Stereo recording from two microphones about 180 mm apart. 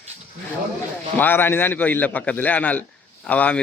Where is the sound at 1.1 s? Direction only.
10° left (ahead or behind).